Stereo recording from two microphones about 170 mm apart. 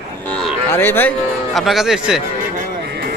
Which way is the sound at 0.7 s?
10° left (ahead or behind).